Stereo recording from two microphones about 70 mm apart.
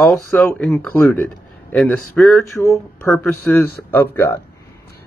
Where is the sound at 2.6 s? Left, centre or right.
Left.